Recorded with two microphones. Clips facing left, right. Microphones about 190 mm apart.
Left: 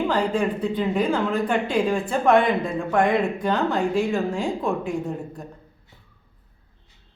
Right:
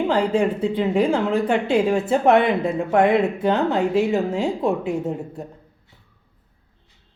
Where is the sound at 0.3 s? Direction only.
25° right (ahead or behind).